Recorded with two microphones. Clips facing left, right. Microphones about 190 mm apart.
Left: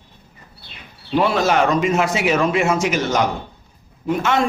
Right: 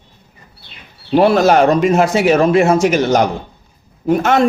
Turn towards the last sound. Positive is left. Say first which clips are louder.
# right 6 dB
turn(degrees=-45)  # may be behind; listen again after turning